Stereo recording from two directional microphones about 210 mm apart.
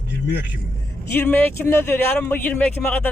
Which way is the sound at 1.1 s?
10° left (ahead or behind).